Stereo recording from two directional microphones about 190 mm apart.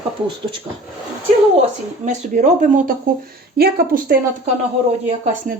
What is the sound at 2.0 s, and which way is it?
Speech, 40° right (ahead or behind).